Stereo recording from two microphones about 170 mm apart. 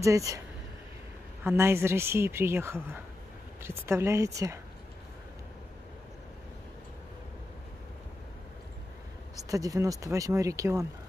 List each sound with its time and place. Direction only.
0.0 s speech: 20° right (ahead or behind)
1.4 s speech: 15° right (ahead or behind)
9.5 s speech: 20° right (ahead or behind)